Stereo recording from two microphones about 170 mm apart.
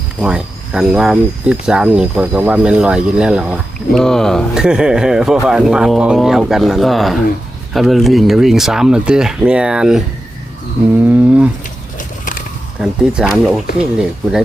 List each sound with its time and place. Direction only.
0.2 s speech: 5° right (ahead or behind)
11.0 s speech: 10° right (ahead or behind)
11.9 s a sound: 50° left (ahead or behind)
12.8 s speech: 5° right (ahead or behind)